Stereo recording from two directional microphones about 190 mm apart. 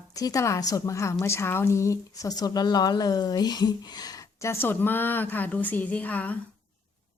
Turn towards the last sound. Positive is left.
turn(degrees=10)  # may be behind; listen again after turning